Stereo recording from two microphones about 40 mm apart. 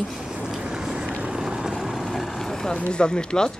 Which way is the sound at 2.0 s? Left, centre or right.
Centre.